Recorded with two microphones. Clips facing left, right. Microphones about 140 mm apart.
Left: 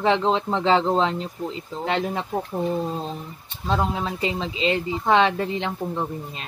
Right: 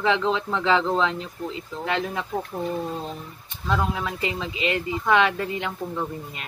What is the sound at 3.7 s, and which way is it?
Speech, 25° left (ahead or behind).